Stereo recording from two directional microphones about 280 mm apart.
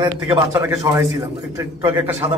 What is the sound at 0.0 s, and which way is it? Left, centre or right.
A man's voice, centre.